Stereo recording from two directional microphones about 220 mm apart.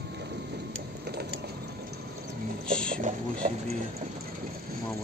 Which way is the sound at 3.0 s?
30° right (ahead or behind).